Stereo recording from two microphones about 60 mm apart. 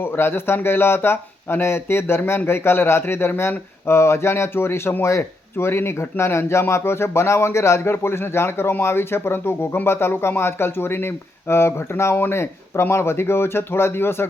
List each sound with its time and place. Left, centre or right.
0.0 s speech: left